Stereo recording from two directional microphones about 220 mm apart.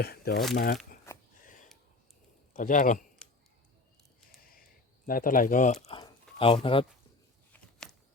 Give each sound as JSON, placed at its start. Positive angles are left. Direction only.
{"t": 0.0, "sound": "speech", "side_deg": 45}
{"t": 1.1, "sound": "a sound", "side_deg": 10}
{"t": 2.5, "sound": "a man's voice", "side_deg": 35}
{"t": 5.0, "sound": "speech", "side_deg": 40}
{"t": 6.4, "sound": "speech", "side_deg": 25}
{"t": 7.5, "sound": "a sound", "side_deg": 0}